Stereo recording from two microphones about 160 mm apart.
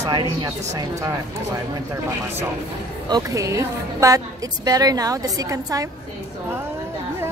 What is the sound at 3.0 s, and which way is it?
A woman's voice, 25° right (ahead or behind).